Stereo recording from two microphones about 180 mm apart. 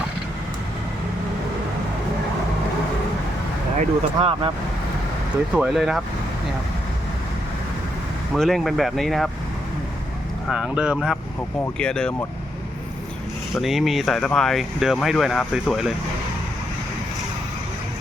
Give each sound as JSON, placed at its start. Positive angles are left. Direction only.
{"t": 3.8, "sound": "speech", "side_deg": -35}
{"t": 5.5, "sound": "speech", "side_deg": -5}
{"t": 8.3, "sound": "speech", "side_deg": 0}
{"t": 10.5, "sound": "speech", "side_deg": -5}
{"t": 13.5, "sound": "speech", "side_deg": 0}